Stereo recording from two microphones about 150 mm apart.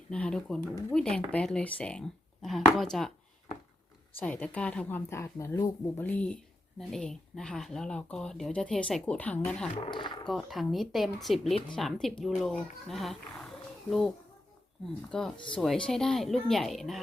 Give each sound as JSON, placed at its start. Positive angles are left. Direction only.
{"t": 0.1, "sound": "speech", "side_deg": 5}
{"t": 4.2, "sound": "a woman's voice", "side_deg": 10}
{"t": 9.9, "sound": "speech", "side_deg": 30}
{"t": 10.2, "sound": "speech", "side_deg": 0}
{"t": 15.1, "sound": "speech", "side_deg": 5}